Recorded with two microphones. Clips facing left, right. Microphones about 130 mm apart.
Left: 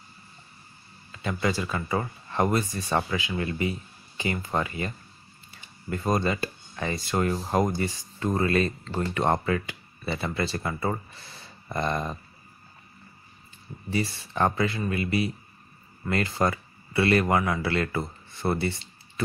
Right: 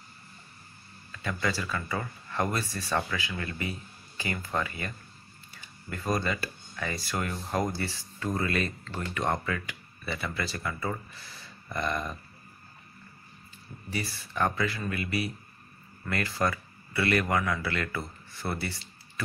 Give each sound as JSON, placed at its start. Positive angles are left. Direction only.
{"t": 1.1, "sound": "speech", "side_deg": 20}
{"t": 7.2, "sound": "speech", "side_deg": 35}
{"t": 7.6, "sound": "speech", "side_deg": 20}
{"t": 13.8, "sound": "speech", "side_deg": 25}